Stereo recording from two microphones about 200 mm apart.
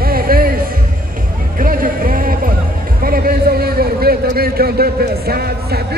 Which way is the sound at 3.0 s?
45° right (ahead or behind).